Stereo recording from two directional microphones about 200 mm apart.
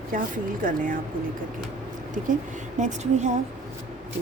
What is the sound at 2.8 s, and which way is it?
Speech, 35° right (ahead or behind).